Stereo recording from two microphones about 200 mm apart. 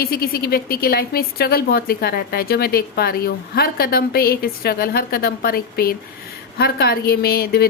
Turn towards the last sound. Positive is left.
turn(degrees=50)  # may be behind; listen again after turning